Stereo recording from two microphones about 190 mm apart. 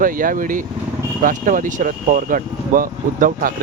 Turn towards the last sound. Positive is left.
turn(degrees=-45)  # may be behind; listen again after turning